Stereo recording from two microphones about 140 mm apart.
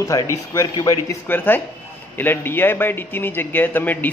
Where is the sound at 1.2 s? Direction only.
15° left (ahead or behind).